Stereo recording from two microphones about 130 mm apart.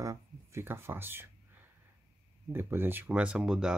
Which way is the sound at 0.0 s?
20° right (ahead or behind).